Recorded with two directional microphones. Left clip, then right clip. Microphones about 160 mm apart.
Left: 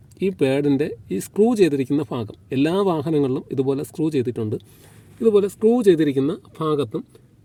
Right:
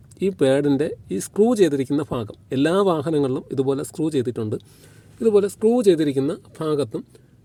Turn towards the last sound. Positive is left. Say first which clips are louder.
# even
turn(degrees=5)  # may be behind; listen again after turning